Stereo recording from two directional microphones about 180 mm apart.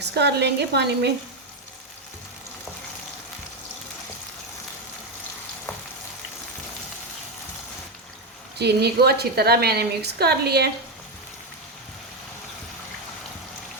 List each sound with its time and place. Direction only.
0.0 s a woman's voice: 70° right (ahead or behind)
8.5 s a woman's voice: 65° right (ahead or behind)